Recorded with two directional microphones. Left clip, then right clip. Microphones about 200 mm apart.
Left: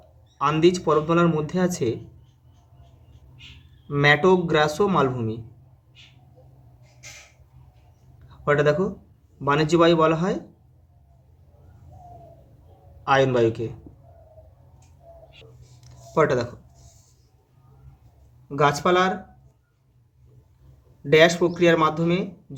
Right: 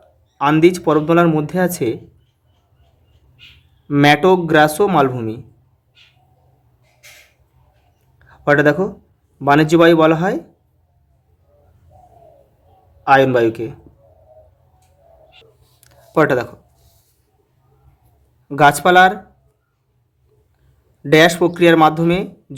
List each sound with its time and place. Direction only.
0.3 s speech: 40° right (ahead or behind)
3.8 s speech: 40° right (ahead or behind)
8.3 s speech: 40° right (ahead or behind)
13.1 s speech: 35° right (ahead or behind)
15.8 s a sound: 40° right (ahead or behind)
18.4 s speech: 50° right (ahead or behind)
21.1 s speech: 45° right (ahead or behind)